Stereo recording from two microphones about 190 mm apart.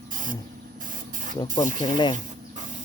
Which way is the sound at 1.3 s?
20° left (ahead or behind).